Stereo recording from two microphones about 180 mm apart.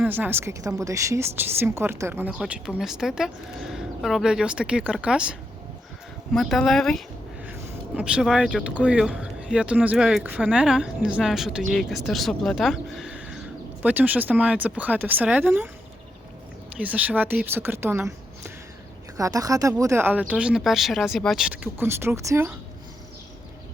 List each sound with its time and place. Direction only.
0.0 s speech: 10° right (ahead or behind)
16.8 s speech: 10° right (ahead or behind)
19.1 s a woman's voice: 20° right (ahead or behind)